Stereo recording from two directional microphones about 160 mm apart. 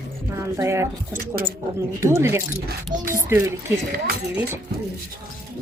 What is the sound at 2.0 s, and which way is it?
Speech, 15° right (ahead or behind).